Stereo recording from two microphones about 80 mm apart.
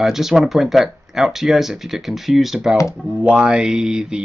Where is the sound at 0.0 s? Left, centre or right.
Centre.